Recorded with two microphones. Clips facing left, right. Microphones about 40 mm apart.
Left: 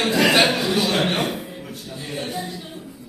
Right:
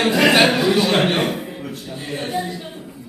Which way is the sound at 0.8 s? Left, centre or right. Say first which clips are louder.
Right 4 dB; right.